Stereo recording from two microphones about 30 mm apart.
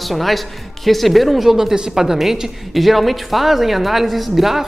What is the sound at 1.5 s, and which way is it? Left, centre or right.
Speech, right.